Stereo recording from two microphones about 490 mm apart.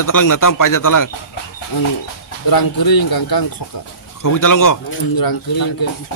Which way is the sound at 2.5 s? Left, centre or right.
Left.